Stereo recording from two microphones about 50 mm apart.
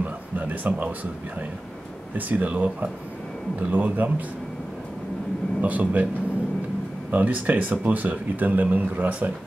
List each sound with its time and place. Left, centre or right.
0.0 s a sound: right
2.1 s speech: right
5.6 s speech: right
7.1 s speech: right